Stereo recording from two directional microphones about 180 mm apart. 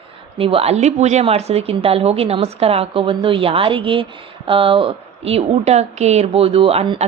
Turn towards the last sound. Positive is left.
turn(degrees=-30)  # may be behind; listen again after turning